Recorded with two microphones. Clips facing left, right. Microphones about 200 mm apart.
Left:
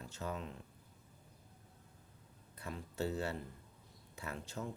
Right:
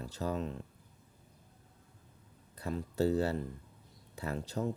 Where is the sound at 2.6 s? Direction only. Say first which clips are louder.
Right 8 dB; 35° right (ahead or behind).